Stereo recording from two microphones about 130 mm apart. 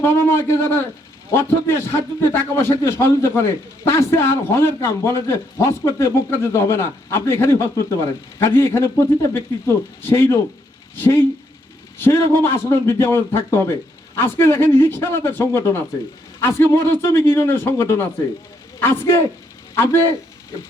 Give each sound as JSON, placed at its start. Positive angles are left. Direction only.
{"t": 0.0, "sound": "a man's voice", "side_deg": 20}